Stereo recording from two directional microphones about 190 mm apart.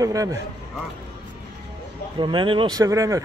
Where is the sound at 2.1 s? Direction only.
25° right (ahead or behind).